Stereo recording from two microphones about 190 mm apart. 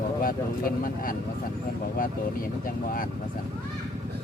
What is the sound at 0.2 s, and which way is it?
Speech, 50° left (ahead or behind).